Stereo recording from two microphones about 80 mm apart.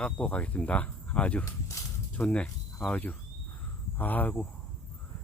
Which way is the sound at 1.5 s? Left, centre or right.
Left.